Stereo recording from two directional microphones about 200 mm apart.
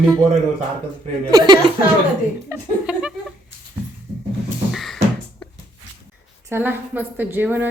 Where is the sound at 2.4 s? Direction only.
5° right (ahead or behind).